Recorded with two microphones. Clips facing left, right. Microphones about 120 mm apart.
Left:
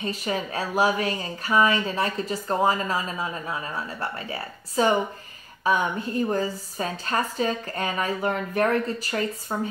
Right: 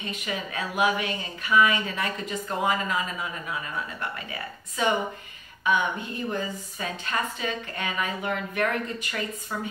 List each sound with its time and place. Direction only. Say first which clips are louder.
0.0 s speech: left 5 dB; 35° left (ahead or behind)